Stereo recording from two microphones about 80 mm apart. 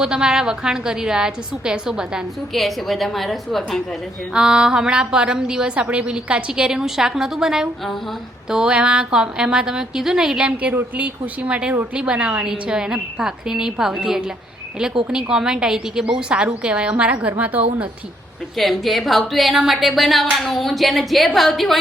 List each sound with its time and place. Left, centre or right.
0.0 s a woman's voice: centre
4.4 s a woman's voice: centre
18.5 s speech: centre